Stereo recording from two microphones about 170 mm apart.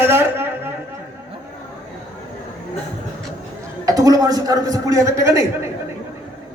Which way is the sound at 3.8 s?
20° right (ahead or behind).